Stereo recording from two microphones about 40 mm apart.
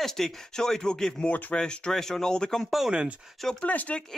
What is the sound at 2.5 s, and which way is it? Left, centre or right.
Speech, centre.